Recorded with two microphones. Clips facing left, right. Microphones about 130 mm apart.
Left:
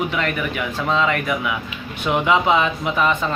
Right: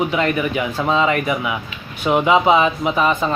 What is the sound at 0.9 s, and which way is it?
A man's voice, 15° right (ahead or behind).